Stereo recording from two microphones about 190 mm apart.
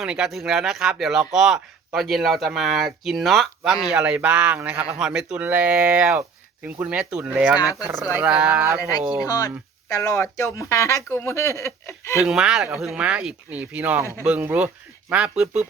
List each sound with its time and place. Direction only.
0.0 s speech: centre (ahead or behind)
9.2 s speech: 20° left (ahead or behind)
12.2 s speech: centre (ahead or behind)